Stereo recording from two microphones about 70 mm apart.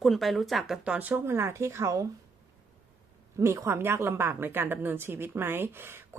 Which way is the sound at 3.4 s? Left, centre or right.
Right.